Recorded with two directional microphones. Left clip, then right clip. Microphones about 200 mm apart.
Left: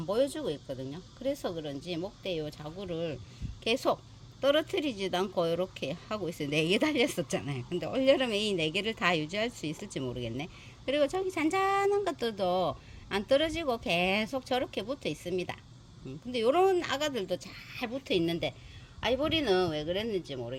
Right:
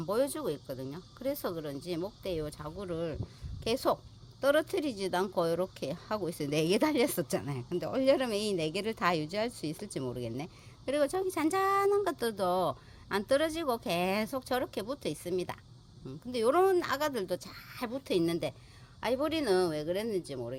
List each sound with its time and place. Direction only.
0.0 s speech: 15° right (ahead or behind)